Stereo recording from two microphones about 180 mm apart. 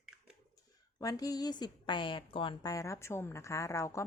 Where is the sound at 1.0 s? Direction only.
20° left (ahead or behind).